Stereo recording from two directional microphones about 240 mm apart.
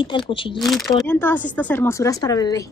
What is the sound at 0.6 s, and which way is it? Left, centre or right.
Speech, centre.